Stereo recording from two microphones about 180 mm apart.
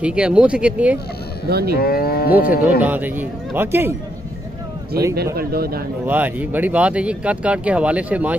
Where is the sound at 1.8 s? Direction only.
60° left (ahead or behind).